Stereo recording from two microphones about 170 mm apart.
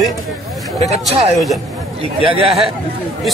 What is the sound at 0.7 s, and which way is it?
Speech, 40° right (ahead or behind).